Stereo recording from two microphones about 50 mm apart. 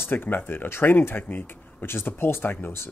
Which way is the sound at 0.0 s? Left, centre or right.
Left.